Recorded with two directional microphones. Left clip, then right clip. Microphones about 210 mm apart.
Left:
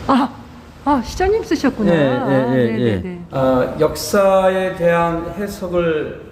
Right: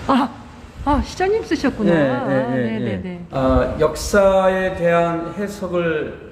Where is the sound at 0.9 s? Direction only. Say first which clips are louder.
Left 2 dB; 5° left (ahead or behind).